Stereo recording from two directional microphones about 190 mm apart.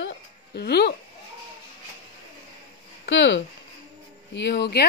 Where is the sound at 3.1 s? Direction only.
75° left (ahead or behind).